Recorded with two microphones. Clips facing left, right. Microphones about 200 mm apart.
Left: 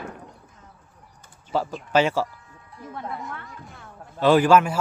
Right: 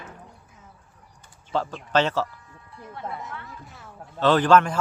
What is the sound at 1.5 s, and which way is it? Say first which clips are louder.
Speech: left 2 dB; 10° left (ahead or behind).